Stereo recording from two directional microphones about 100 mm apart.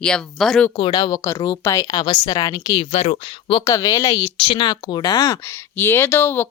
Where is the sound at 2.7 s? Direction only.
90° left.